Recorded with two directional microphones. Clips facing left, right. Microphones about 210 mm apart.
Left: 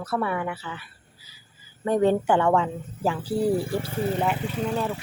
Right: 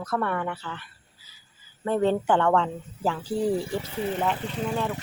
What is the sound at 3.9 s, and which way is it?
Speech, 45° left (ahead or behind).